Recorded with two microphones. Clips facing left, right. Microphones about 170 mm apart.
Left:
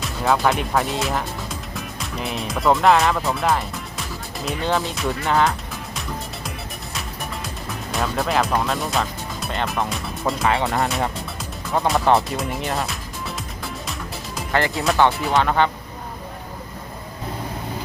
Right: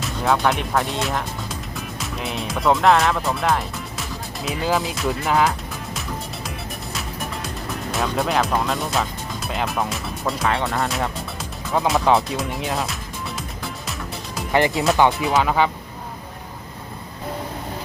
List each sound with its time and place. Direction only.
0.0 s speech: centre (ahead or behind)
7.9 s speech: centre (ahead or behind)
14.5 s speech: 20° right (ahead or behind)